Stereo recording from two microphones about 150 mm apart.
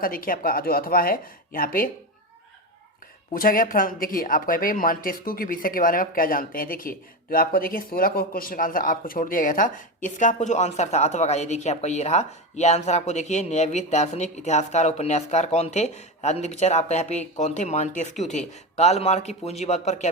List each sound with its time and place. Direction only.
0.0 s speech: 70° left (ahead or behind)
3.3 s speech: 70° left (ahead or behind); by 20.1 s 50° left (ahead or behind)